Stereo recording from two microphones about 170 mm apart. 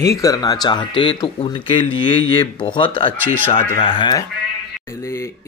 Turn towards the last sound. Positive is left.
turn(degrees=15)  # may be behind; listen again after turning